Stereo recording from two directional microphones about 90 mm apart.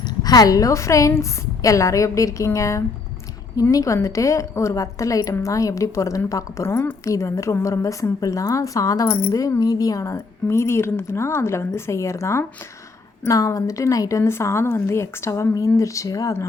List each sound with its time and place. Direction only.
0.0 s speech: 50° left (ahead or behind)